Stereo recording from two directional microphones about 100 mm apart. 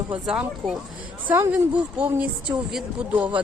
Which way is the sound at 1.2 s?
25° right (ahead or behind).